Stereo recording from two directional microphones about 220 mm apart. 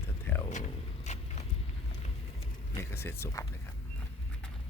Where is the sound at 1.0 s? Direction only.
30° left (ahead or behind).